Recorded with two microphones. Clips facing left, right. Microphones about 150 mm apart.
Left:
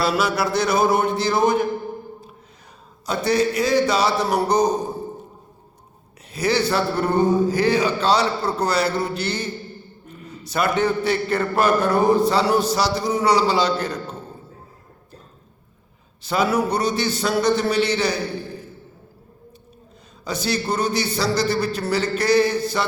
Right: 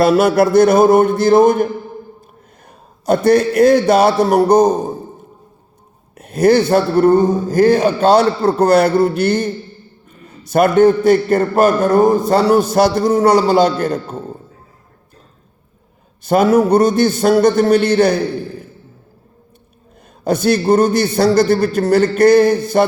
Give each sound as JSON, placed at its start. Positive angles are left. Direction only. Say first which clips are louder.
{"t": 0.0, "sound": "a man's voice", "louder": "right 10 dB", "side_deg": -50}
{"t": 3.1, "sound": "a man's voice", "louder": "right 8 dB", "side_deg": -55}
{"t": 6.1, "sound": "a man's voice", "louder": "right 10 dB", "side_deg": -50}
{"t": 16.2, "sound": "a man's voice", "louder": "right 9 dB", "side_deg": -50}
{"t": 20.2, "sound": "a man's voice", "louder": "right 10 dB", "side_deg": -55}